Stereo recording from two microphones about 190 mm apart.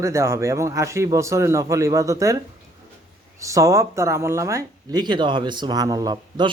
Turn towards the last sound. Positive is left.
turn(degrees=-20)  # may be behind; listen again after turning